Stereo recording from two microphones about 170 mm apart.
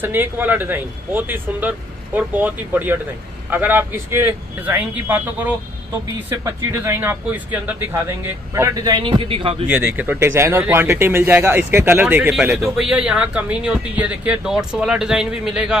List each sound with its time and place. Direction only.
0.0 s speech: 10° right (ahead or behind); by 9.6 s 30° right (ahead or behind)
9.7 s speech: 10° right (ahead or behind)